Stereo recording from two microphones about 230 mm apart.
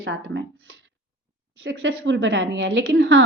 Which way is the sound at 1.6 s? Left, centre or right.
Right.